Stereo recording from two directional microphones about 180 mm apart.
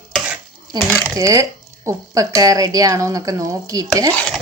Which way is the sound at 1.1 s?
15° right (ahead or behind).